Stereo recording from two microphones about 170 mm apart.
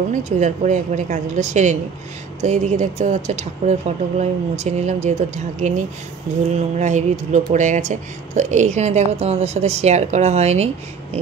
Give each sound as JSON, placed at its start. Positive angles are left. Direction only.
{"t": 0.1, "sound": "a woman's voice", "side_deg": -45}